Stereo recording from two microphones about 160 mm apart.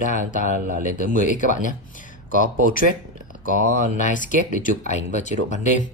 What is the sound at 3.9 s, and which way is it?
Speech, 55° left (ahead or behind).